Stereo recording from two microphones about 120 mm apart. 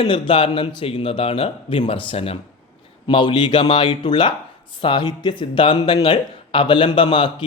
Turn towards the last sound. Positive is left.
turn(degrees=45)  # may be behind; listen again after turning